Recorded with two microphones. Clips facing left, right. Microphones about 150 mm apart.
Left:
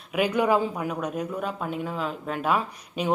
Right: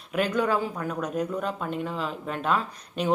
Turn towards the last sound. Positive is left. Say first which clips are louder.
# even
turn(degrees=5)  # may be behind; listen again after turning